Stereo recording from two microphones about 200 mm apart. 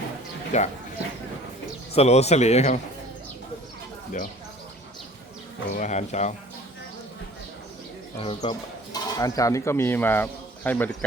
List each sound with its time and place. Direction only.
0.5 s speech: 35° left (ahead or behind)
1.9 s speech: 30° left (ahead or behind)
4.1 s speech: 40° left (ahead or behind)
5.7 s speech: 35° left (ahead or behind)
8.2 s speech: 25° left (ahead or behind); by 10.8 s 10° left (ahead or behind)